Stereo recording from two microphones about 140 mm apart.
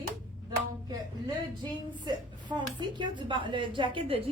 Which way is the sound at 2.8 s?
35° right (ahead or behind).